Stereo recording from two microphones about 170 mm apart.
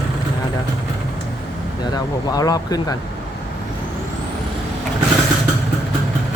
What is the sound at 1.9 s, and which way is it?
Speech, 20° left (ahead or behind).